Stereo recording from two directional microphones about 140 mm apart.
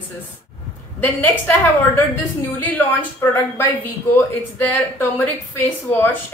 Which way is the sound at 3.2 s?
15° left (ahead or behind).